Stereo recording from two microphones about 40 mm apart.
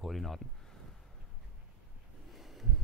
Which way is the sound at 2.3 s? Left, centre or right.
Centre.